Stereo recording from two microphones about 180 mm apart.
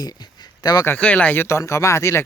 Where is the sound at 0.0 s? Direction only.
20° left (ahead or behind).